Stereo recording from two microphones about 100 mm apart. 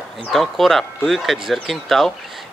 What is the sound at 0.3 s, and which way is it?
Speech, centre (ahead or behind).